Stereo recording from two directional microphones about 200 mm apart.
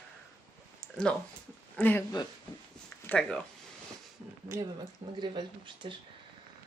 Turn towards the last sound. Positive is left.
turn(degrees=-25)  # may be behind; listen again after turning